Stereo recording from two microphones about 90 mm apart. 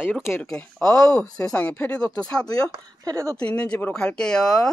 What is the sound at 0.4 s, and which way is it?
Speech, 15° left (ahead or behind).